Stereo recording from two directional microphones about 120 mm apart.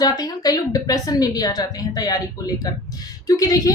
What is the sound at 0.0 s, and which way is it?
A woman's voice, 30° left (ahead or behind).